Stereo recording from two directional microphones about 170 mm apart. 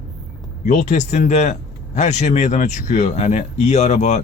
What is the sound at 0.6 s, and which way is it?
Speech, 45° left (ahead or behind).